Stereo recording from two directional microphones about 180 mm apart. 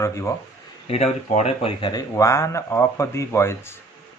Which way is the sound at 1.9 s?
15° left (ahead or behind).